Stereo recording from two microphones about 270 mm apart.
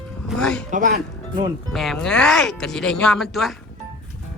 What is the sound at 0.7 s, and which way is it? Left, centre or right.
Speech, right.